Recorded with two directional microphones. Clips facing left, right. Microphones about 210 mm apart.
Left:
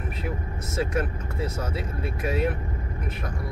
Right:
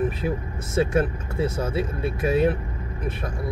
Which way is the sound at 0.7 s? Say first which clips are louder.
Right 6 dB; 25° right (ahead or behind).